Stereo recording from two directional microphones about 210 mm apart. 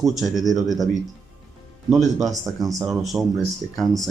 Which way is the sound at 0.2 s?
Centre (ahead or behind).